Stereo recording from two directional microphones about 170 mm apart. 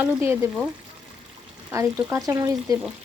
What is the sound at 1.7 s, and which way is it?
Speech, 20° right (ahead or behind).